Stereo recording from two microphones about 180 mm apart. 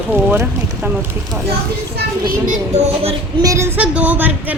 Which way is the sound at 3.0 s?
35° right (ahead or behind).